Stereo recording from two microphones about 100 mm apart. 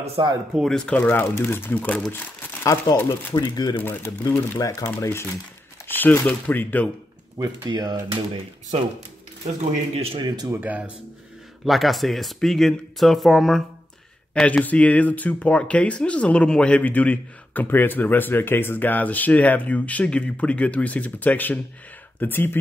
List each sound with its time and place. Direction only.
0.2 s speech: 55° right (ahead or behind)
0.6 s speech: 5° left (ahead or behind); by 3.3 s 20° left (ahead or behind)
3.3 s speech: 40° left (ahead or behind)
3.7 s speech: 20° left (ahead or behind)
4.6 s speech: 30° left (ahead or behind)
7.3 s speech: 40° right (ahead or behind)
9.6 s a man's voice: 90° right
10.1 s speech: 45° right (ahead or behind)
10.5 s speech: 15° right (ahead or behind)
11.6 s speech: centre (ahead or behind); by 22.6 s 20° left (ahead or behind)